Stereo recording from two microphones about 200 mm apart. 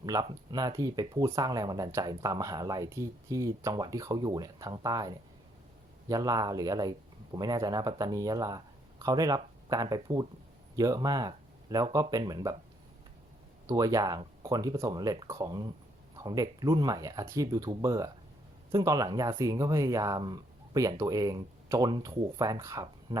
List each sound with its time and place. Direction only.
0.0 s speech: 20° right (ahead or behind)
13.7 s speech: 20° right (ahead or behind)